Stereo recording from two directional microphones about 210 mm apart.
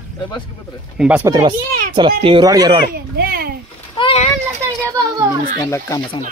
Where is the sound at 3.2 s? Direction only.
45° right (ahead or behind).